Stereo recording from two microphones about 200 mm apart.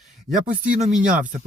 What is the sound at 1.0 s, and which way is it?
Speech, 40° right (ahead or behind).